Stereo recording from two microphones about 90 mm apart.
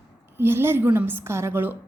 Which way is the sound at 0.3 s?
25° right (ahead or behind).